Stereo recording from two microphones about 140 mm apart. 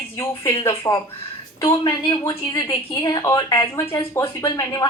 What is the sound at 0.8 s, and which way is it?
A woman's voice, 25° left (ahead or behind).